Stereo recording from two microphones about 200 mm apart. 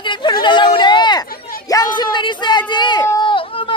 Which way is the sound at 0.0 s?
25° left (ahead or behind).